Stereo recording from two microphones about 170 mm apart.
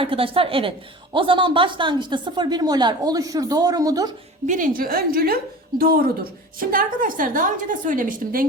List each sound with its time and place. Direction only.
0.0 s a woman's voice: 30° right (ahead or behind)
4.4 s a woman's voice: 50° right (ahead or behind)